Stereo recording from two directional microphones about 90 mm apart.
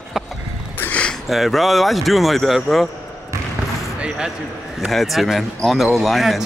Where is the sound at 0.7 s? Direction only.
20° left (ahead or behind).